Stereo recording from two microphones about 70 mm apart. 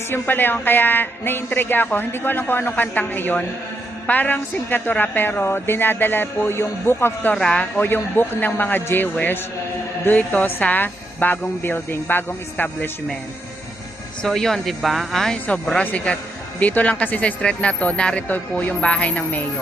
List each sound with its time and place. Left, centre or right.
0.1 s a man's voice: left
7.3 s speech: centre
7.8 s a man's voice: left
10.1 s a man's voice: left
14.2 s speech: centre
15.4 s a man's voice: centre